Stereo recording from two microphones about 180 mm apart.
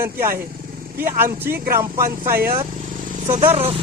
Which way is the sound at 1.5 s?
55° right (ahead or behind).